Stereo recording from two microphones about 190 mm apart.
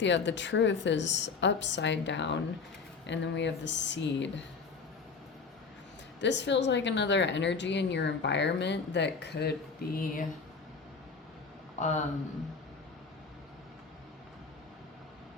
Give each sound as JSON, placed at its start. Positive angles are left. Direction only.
{"t": 0.0, "sound": "speech", "side_deg": 70}
{"t": 6.1, "sound": "speech", "side_deg": 70}
{"t": 11.8, "sound": "speech", "side_deg": 40}